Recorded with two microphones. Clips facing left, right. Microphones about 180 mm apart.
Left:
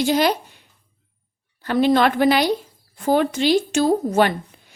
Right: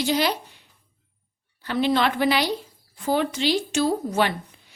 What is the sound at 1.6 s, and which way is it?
A woman's voice, 50° left (ahead or behind).